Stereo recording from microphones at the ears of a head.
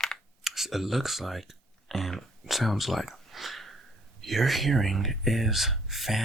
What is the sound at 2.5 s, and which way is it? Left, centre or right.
Speech, centre.